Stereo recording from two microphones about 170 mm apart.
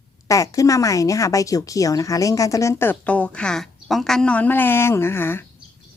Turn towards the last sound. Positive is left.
turn(degrees=15)  # may be behind; listen again after turning